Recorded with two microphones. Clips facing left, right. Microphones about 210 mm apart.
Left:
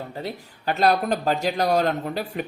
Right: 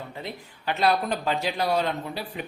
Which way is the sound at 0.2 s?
40° left (ahead or behind).